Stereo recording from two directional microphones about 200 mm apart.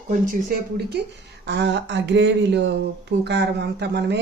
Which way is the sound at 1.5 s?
60° right (ahead or behind).